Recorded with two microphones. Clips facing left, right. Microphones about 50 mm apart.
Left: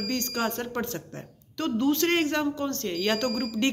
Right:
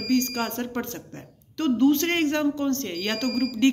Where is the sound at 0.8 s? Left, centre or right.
Centre.